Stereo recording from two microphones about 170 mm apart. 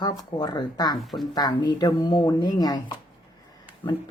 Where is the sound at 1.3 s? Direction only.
25° left (ahead or behind).